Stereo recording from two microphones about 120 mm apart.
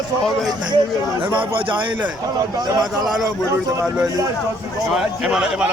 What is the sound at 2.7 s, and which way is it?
Speech, 35° right (ahead or behind).